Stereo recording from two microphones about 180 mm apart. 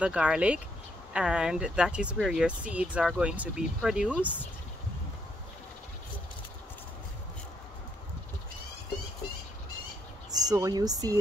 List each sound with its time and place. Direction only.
0.0 s speech: 5° right (ahead or behind)
10.4 s speech: 20° right (ahead or behind)